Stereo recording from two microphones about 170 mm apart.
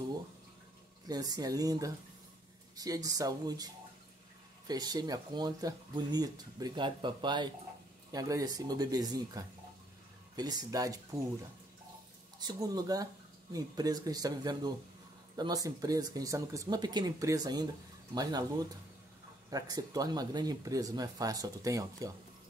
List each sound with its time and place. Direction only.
1.0 s speech: 20° right (ahead or behind)
12.4 s speech: 20° right (ahead or behind)